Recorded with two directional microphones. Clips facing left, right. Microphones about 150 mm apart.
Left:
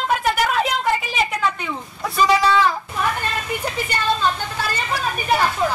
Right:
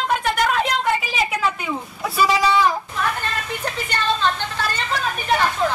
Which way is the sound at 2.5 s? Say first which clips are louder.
Even; 15° right (ahead or behind).